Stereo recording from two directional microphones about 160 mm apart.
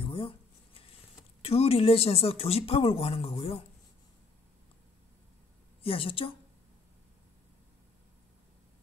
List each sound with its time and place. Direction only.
0.0 s a sound: 35° left (ahead or behind)
1.4 s speech: 40° left (ahead or behind)
5.8 s a woman's voice: 35° left (ahead or behind)